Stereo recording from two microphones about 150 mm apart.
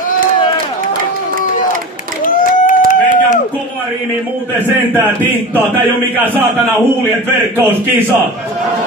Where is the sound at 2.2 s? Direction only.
60° left (ahead or behind).